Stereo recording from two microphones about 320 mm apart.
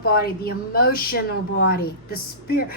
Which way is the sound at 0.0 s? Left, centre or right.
Left.